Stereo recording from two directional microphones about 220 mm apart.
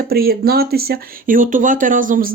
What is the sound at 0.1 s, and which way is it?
Speech, 45° right (ahead or behind).